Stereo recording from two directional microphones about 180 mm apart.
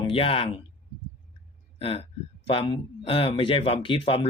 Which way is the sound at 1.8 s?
30° left (ahead or behind).